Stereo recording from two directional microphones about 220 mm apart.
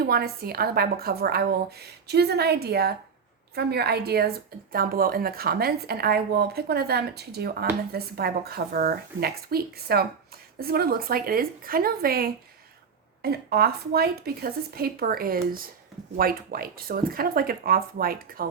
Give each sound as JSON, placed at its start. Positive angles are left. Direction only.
{"t": 0.0, "sound": "speech", "side_deg": -45}